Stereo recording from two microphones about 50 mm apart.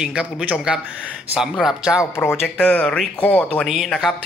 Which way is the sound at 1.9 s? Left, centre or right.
Centre.